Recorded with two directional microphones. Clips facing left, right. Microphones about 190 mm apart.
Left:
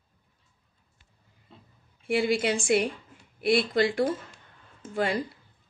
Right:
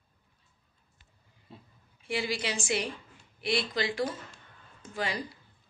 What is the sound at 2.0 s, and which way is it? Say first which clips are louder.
A woman's voice: left 8 dB; 55° left (ahead or behind).